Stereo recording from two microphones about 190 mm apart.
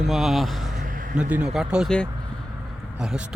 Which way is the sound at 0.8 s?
45° right (ahead or behind).